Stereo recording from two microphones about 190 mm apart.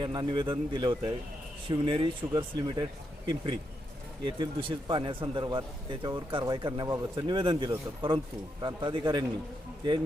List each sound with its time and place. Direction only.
0.0 s a man's voice: 25° right (ahead or behind)